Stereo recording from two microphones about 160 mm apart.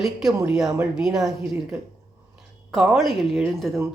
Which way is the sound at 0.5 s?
5° right (ahead or behind).